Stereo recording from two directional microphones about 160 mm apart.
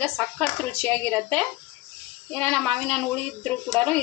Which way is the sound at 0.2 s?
10° left (ahead or behind).